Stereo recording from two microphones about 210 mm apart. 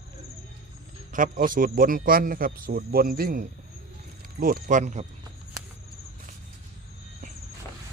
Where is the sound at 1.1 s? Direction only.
40° right (ahead or behind).